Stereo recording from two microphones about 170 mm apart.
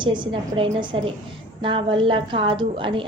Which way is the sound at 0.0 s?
30° right (ahead or behind).